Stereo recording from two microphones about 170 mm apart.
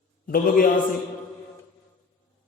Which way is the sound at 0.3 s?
55° left (ahead or behind).